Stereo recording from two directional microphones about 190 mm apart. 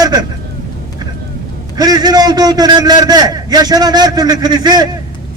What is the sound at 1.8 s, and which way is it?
A man's voice, 20° right (ahead or behind).